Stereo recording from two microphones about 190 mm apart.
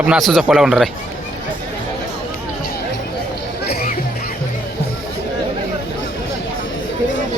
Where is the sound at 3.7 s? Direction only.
50° left (ahead or behind).